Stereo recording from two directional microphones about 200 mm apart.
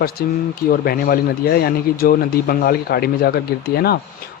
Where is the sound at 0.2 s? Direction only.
50° left (ahead or behind).